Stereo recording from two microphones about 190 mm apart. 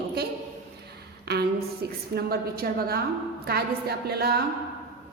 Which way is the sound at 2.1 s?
55° right (ahead or behind).